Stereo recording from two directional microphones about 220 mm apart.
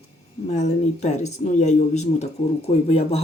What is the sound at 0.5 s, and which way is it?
Speech, 30° left (ahead or behind).